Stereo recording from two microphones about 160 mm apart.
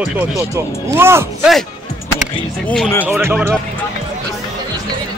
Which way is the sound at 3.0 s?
15° right (ahead or behind).